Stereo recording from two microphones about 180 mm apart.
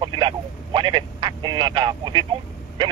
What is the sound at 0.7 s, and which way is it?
Speech, 25° right (ahead or behind).